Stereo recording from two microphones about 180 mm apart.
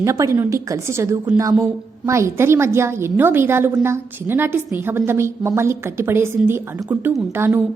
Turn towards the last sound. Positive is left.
turn(degrees=-15)  # may be behind; listen again after turning